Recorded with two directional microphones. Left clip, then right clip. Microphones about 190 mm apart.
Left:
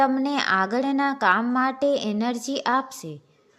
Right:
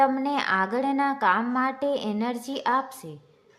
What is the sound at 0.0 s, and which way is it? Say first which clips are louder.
A woman's voice: left 1 dB; 20° left (ahead or behind).